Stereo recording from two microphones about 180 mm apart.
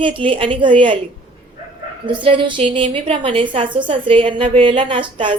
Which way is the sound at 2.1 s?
30° right (ahead or behind).